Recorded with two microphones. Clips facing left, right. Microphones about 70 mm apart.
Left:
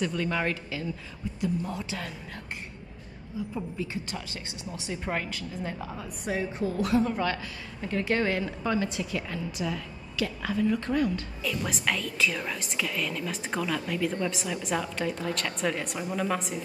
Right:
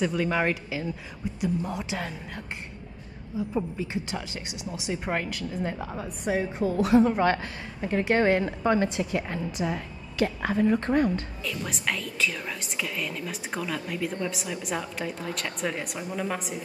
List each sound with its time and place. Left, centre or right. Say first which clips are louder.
0.0 s a woman's voice: right 3 dB; centre
3.5 s a woman's voice: right 5 dB; centre
7.1 s a woman's voice: right 6 dB; right
7.8 s a woman's voice: right 4 dB; right
11.4 s a woman's voice: left 3 dB; centre